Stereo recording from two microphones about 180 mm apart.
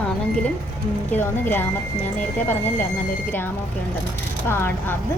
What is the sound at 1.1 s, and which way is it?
Speech, 10° left (ahead or behind).